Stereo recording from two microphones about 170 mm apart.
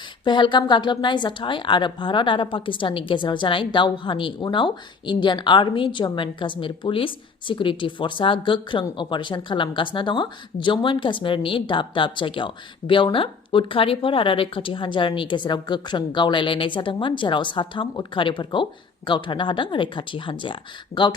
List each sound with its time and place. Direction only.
0.3 s a woman's voice: 25° left (ahead or behind)